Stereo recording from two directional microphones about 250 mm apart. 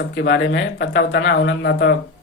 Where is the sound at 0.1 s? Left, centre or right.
Left.